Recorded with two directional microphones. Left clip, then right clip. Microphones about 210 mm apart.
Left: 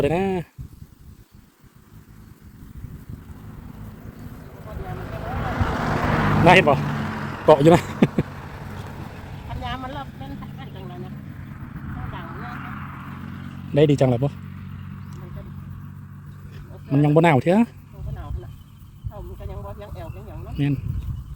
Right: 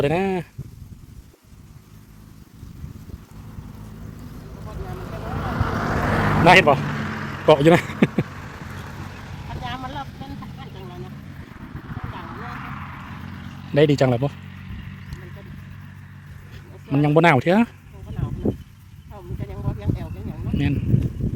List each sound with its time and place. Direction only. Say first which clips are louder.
0.0 s speech: even; centre (ahead or behind)
4.9 s vehicle: even; 50° right (ahead or behind)
6.4 s speech: right 1 dB; centre (ahead or behind)
6.8 s vehicle: even; 25° left (ahead or behind)
7.4 s a man's voice: left 1 dB; 5° left (ahead or behind)
8.2 s vehicle: even; 35° left (ahead or behind)
13.7 s speech: right 1 dB; 5° right (ahead or behind)
14.4 s vehicle: right 1 dB; 50° left (ahead or behind)
16.9 s speech: right 1 dB; centre (ahead or behind)
19.1 s a sound: right 2 dB; 10° left (ahead or behind)
20.5 s speech: right 1 dB; centre (ahead or behind)